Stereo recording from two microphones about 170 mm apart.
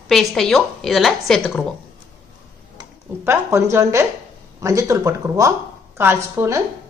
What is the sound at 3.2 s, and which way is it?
A woman's voice, 15° right (ahead or behind).